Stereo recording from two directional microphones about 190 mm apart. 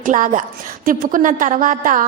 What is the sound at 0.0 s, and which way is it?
A woman's voice, 40° right (ahead or behind).